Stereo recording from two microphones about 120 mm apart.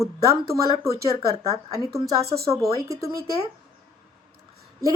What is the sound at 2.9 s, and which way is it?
Speech, 25° right (ahead or behind).